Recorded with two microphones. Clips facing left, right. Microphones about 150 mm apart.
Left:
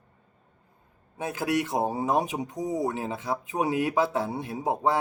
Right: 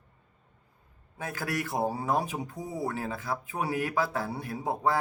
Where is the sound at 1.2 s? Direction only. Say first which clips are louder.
Left 6 dB; 20° left (ahead or behind).